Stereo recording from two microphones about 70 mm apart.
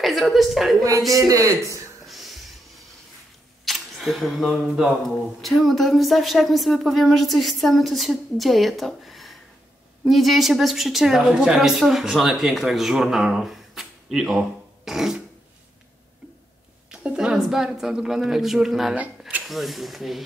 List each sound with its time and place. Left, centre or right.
0.0 s a woman's voice: centre
1.3 s a man's voice: right
2.0 s music: centre
3.6 s a sound: centre
5.0 s a woman's voice: centre
14.9 s a sound: centre
16.9 s a woman's voice: centre
18.9 s cash register: right
19.4 s a woman's voice: centre